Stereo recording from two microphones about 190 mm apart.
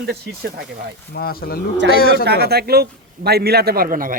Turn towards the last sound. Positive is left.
turn(degrees=-50)  # may be behind; listen again after turning